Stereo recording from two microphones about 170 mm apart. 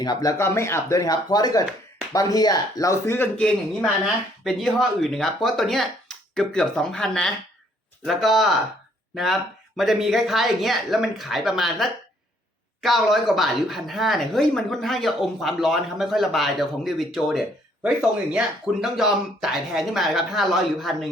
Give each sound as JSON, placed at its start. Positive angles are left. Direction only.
{"t": 0.0, "sound": "speech", "side_deg": 20}